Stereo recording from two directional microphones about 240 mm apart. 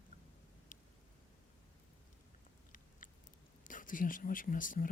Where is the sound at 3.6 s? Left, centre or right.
Left.